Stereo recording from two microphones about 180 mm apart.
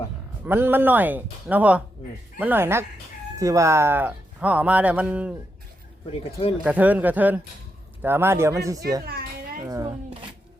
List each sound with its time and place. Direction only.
0.4 s speech: 10° right (ahead or behind)
6.1 s speech: 35° left (ahead or behind)
6.7 s speech: 10° right (ahead or behind)
9.0 s a sound: 55° right (ahead or behind)
9.6 s speech: 20° right (ahead or behind)